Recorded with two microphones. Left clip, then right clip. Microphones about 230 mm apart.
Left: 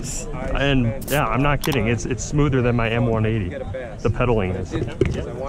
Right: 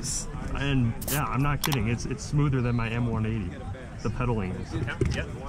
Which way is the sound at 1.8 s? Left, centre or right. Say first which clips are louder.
Left 9 dB; left.